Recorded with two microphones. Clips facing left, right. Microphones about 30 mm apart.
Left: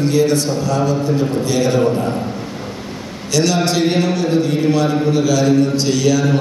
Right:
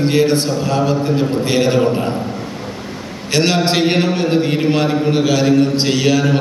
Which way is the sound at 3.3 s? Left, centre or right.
Right.